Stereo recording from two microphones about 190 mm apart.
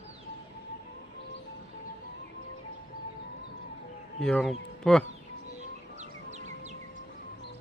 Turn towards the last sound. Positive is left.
turn(degrees=-35)  # may be behind; listen again after turning